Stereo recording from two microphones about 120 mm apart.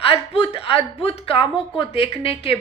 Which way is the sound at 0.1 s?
55° left (ahead or behind).